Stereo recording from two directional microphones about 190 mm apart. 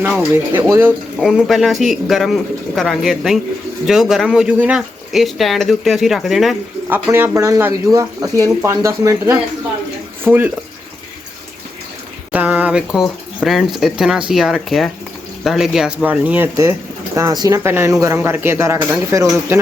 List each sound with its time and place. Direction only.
0.0 s speech: 10° right (ahead or behind)
7.1 s speech: 15° right (ahead or behind)
12.3 s speech: 10° right (ahead or behind)